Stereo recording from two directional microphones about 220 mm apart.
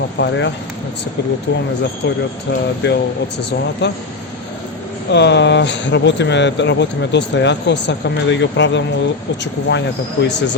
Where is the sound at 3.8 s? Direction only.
50° left (ahead or behind).